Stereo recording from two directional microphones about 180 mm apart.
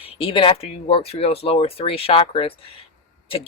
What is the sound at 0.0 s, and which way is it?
Speech, 30° left (ahead or behind).